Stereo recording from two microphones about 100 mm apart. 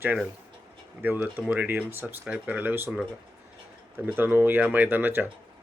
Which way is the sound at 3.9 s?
20° right (ahead or behind).